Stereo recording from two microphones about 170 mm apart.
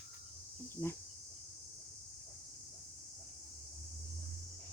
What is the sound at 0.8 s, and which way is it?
Speech, 10° left (ahead or behind).